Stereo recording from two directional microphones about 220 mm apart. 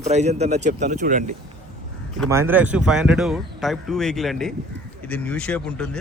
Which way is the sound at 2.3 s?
10° right (ahead or behind).